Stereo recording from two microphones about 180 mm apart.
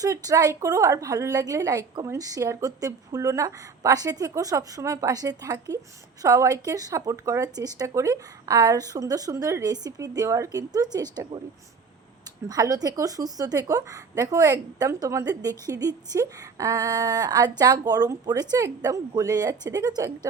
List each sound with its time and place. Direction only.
0.0 s a woman's voice: 20° right (ahead or behind)
12.5 s a woman's voice: 20° right (ahead or behind)